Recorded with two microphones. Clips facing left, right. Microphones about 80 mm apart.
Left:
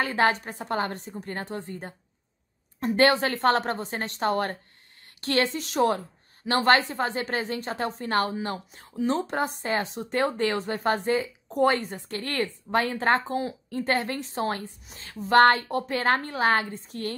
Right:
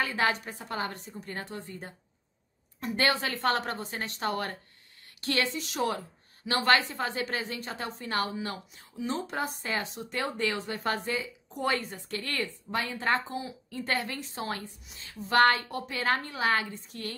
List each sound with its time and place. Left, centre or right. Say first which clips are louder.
0.0 s a woman's voice: left 5 dB; left